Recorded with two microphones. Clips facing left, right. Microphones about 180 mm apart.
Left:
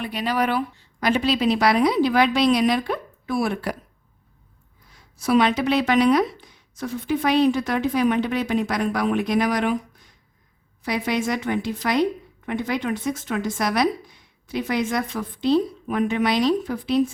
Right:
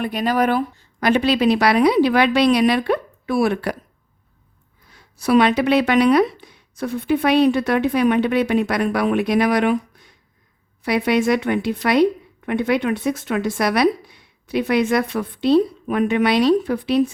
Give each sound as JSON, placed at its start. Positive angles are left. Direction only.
{"t": 0.0, "sound": "speech", "side_deg": -50}
{"t": 4.9, "sound": "speech", "side_deg": -65}